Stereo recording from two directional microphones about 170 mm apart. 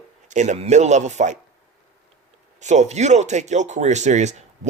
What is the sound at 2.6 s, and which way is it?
Speech, 45° right (ahead or behind).